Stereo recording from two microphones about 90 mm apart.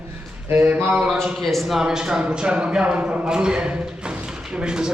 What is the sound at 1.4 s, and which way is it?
Speech, centre (ahead or behind).